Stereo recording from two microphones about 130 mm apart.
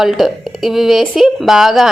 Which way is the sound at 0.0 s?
Centre (ahead or behind).